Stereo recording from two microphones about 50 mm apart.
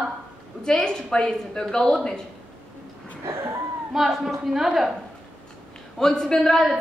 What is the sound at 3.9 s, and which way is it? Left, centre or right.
A woman's voice, centre.